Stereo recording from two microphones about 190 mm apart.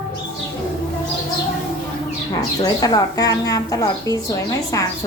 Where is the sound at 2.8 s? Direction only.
20° left (ahead or behind).